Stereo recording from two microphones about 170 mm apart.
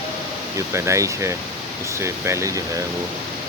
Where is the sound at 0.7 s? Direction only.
15° right (ahead or behind).